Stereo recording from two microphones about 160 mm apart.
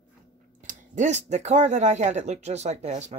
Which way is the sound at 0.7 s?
50° right (ahead or behind).